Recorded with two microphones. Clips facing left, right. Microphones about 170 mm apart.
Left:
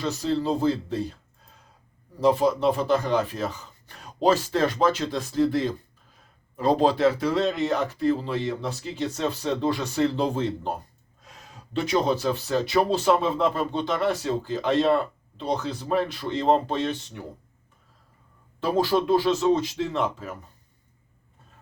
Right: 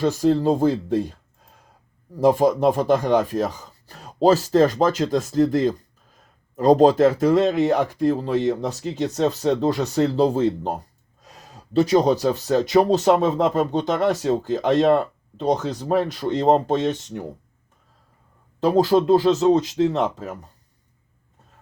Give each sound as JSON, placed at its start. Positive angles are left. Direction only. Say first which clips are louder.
{"t": 0.0, "sound": "speech", "louder": "right 7 dB", "side_deg": -50}
{"t": 2.2, "sound": "speech", "louder": "right 4 dB", "side_deg": -45}
{"t": 18.8, "sound": "speech", "louder": "right 5 dB", "side_deg": -40}